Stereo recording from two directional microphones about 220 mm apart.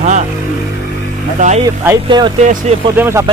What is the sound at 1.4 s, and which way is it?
Speech, 35° right (ahead or behind).